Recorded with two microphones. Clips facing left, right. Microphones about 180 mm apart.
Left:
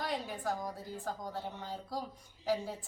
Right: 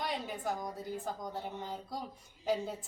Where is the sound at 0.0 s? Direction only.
20° right (ahead or behind).